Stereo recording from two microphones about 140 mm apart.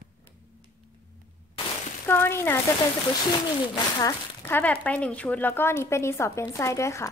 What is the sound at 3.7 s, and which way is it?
Speech, 25° left (ahead or behind).